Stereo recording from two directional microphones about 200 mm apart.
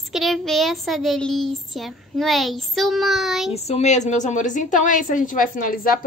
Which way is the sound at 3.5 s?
35° left (ahead or behind).